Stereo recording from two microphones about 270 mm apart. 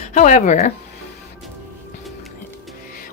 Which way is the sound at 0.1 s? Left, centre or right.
Left.